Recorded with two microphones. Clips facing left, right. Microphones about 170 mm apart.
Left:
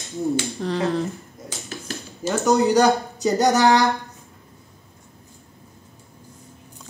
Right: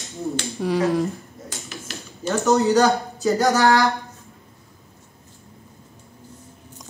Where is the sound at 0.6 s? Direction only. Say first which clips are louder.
Right 2 dB; 10° right (ahead or behind).